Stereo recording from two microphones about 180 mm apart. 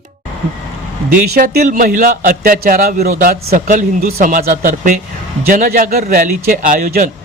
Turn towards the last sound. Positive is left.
turn(degrees=-50)  # may be behind; listen again after turning